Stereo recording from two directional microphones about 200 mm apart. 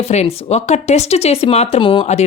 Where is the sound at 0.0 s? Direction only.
30° left (ahead or behind).